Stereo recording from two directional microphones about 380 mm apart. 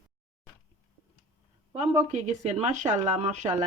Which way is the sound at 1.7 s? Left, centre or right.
Centre.